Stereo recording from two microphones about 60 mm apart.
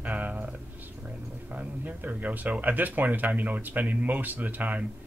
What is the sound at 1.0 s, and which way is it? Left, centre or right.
Speech, right.